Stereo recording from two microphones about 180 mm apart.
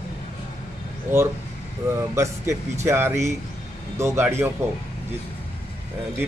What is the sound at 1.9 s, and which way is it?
Speech, 15° right (ahead or behind).